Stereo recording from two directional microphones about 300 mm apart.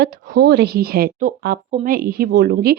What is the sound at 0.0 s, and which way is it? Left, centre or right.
Speech, right.